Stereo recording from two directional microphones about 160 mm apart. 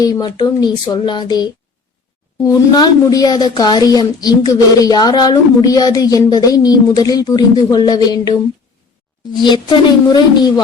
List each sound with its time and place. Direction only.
0.0 s speech: 25° left (ahead or behind)
9.4 s speech: 25° left (ahead or behind)